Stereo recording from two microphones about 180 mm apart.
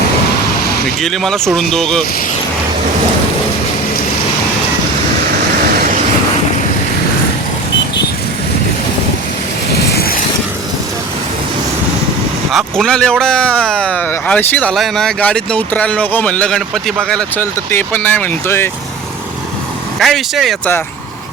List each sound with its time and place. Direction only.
1.0 s speech: centre (ahead or behind)
9.8 s vehicle: 60° left (ahead or behind)
12.5 s speech: centre (ahead or behind)
20.0 s speech: centre (ahead or behind)